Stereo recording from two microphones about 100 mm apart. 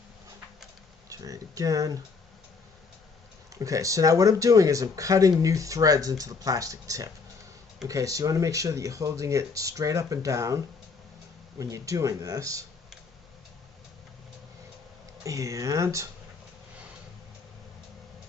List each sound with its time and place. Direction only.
1.1 s speech: 35° right (ahead or behind)
3.5 s speech: 35° right (ahead or behind)
11.6 s speech: 35° right (ahead or behind)
15.2 s speech: 35° right (ahead or behind)